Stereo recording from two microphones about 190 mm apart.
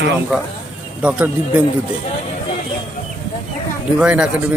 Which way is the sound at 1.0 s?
10° right (ahead or behind).